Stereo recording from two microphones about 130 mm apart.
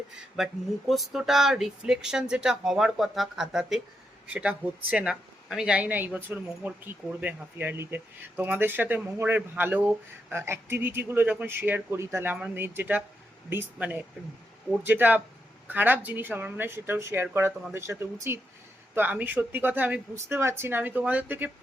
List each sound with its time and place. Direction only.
0.3 s speech: centre (ahead or behind)